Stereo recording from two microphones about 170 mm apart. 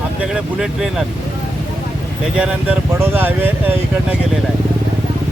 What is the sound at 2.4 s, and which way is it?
Speech, 10° right (ahead or behind).